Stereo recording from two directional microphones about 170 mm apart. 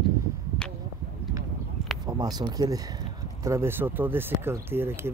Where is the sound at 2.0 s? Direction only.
20° right (ahead or behind).